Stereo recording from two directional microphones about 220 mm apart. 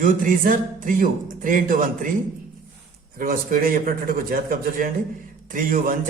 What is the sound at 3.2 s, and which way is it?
A man's voice, 40° right (ahead or behind).